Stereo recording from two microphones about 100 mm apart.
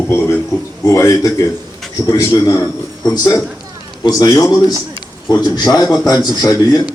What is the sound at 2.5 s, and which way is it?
Speech, 40° left (ahead or behind).